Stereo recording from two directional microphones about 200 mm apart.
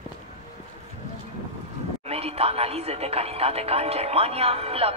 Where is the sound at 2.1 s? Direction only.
30° right (ahead or behind).